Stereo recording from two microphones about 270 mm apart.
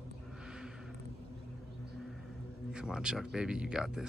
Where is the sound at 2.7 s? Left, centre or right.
Centre.